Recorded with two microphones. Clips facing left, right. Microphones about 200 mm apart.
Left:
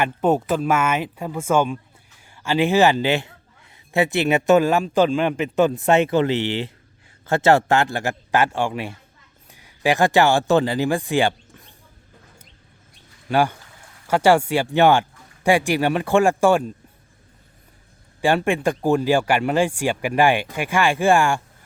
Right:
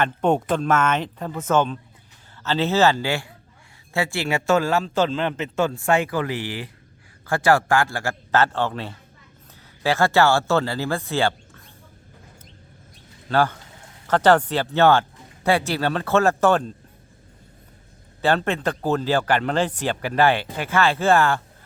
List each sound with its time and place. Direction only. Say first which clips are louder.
0.0 s a man's voice: left 1 dB; 5° left (ahead or behind)
13.2 s speech: left 1 dB; 15° left (ahead or behind)
18.2 s speech: left 2 dB; 10° left (ahead or behind)